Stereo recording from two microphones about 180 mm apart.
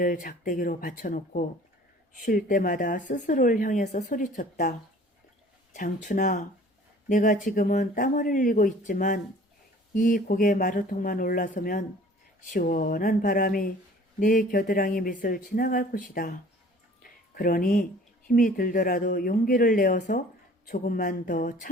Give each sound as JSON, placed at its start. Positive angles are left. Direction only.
{"t": 0.0, "sound": "speech", "side_deg": 50}
{"t": 5.7, "sound": "speech", "side_deg": 45}
{"t": 17.0, "sound": "music", "side_deg": 50}
{"t": 18.3, "sound": "speech", "side_deg": 50}